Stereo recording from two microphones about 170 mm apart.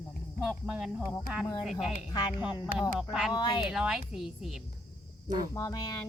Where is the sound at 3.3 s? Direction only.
25° left (ahead or behind).